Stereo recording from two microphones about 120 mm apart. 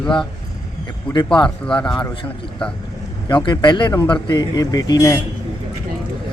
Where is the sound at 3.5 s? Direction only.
40° left (ahead or behind).